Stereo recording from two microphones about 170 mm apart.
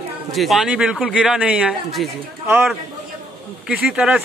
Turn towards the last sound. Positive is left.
turn(degrees=-5)  # may be behind; listen again after turning